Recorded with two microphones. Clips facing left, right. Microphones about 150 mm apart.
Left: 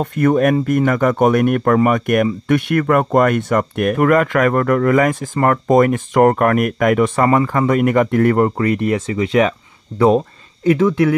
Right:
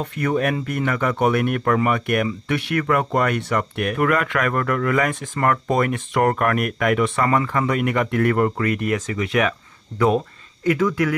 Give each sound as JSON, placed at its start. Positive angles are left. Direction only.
{"t": 0.0, "sound": "speech", "side_deg": 45}